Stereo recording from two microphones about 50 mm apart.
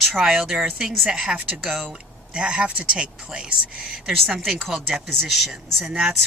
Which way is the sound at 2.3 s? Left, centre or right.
Centre.